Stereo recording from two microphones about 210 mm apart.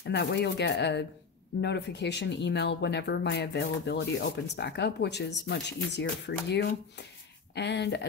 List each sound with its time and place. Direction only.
0.0 s speech: 55° left (ahead or behind)